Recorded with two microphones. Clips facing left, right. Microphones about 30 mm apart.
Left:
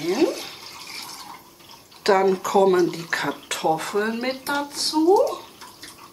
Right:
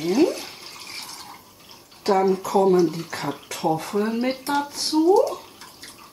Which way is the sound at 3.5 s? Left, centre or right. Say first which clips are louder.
Left 4 dB; left.